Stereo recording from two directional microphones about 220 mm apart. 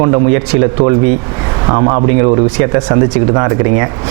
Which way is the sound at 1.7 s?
25° right (ahead or behind).